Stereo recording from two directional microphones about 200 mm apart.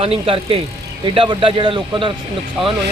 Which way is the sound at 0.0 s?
30° right (ahead or behind).